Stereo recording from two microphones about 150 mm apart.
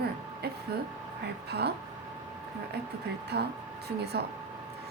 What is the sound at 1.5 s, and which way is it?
Speech, 90° right.